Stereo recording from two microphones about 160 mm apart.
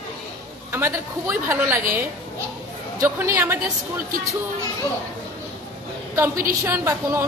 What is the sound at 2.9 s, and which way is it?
Speech, 15° right (ahead or behind).